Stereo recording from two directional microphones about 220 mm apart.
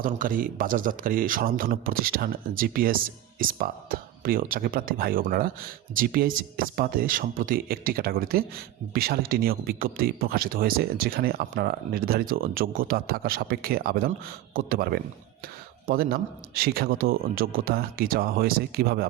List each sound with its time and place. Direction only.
0.0 s a man's voice: 40° right (ahead or behind)